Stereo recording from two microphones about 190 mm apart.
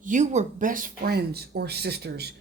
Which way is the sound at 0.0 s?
40° right (ahead or behind).